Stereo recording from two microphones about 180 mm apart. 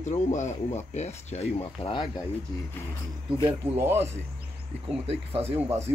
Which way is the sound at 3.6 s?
15° right (ahead or behind).